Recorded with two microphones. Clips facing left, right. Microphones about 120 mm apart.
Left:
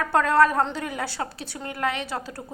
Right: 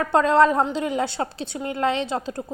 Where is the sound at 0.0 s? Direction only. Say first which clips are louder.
Right 2 dB; 25° right (ahead or behind).